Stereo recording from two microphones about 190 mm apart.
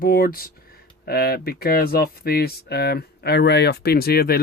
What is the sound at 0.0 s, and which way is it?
Speech, 50° left (ahead or behind).